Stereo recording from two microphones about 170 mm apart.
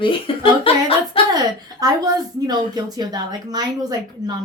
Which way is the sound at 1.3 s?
25° right (ahead or behind).